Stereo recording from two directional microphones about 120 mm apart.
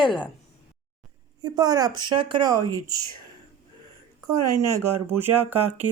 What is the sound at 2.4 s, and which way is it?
Speech, 30° right (ahead or behind).